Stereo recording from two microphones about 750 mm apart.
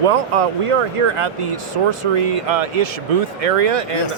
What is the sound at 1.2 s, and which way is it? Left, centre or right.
Speech, right.